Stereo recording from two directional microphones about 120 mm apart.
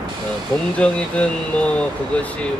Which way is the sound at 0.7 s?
10° left (ahead or behind).